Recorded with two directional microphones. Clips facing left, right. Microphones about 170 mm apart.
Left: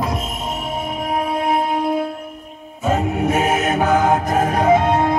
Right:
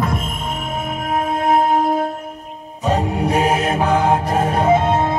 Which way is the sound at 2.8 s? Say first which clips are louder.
Even; 35° right (ahead or behind).